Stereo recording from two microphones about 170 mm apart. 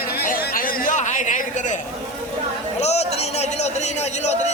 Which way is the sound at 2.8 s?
40° left (ahead or behind).